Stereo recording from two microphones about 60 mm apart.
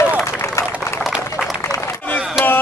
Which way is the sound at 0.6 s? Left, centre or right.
Left.